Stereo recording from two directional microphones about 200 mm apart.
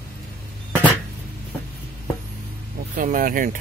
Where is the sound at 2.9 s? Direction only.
40° right (ahead or behind).